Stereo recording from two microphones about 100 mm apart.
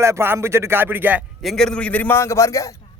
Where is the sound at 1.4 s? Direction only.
5° left (ahead or behind); by 2.7 s 30° left (ahead or behind).